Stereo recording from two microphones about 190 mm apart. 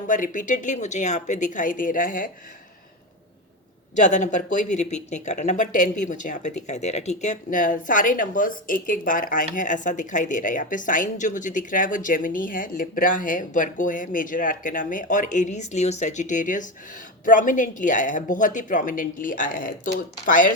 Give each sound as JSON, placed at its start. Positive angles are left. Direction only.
{"t": 0.1, "sound": "speech", "side_deg": 45}
{"t": 3.9, "sound": "speech", "side_deg": 40}